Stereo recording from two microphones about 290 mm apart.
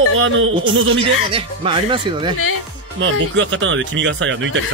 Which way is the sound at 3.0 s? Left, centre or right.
Right.